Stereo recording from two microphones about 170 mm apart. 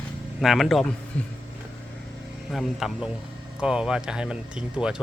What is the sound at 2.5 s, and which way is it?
Speech, centre (ahead or behind).